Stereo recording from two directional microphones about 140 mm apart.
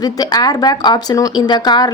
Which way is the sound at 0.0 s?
25° left (ahead or behind).